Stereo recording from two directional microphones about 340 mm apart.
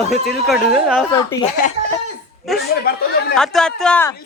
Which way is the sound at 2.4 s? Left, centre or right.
Centre.